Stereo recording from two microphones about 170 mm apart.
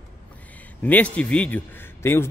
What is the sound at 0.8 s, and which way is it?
Speech, 10° left (ahead or behind).